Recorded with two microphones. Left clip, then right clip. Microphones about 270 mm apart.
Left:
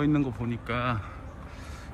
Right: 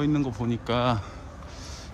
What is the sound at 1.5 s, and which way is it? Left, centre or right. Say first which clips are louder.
Vehicle: right 3 dB; centre.